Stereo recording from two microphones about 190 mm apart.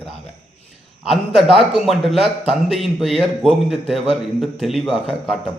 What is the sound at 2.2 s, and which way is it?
Speech, 35° right (ahead or behind).